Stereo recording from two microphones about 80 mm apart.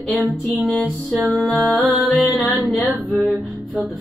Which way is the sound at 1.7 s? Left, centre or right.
Centre.